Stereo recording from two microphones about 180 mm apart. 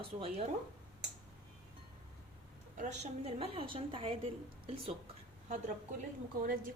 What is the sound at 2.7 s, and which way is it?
A woman's voice, 40° right (ahead or behind).